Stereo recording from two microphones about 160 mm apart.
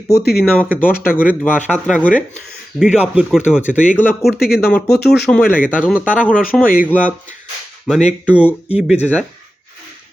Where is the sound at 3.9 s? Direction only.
10° left (ahead or behind).